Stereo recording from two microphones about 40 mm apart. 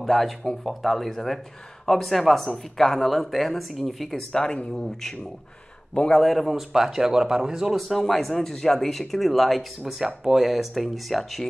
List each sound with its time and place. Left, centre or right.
0.0 s speech: centre
4.3 s speech: centre
6.1 s speech: centre
7.7 s speech: centre
9.9 s speech: centre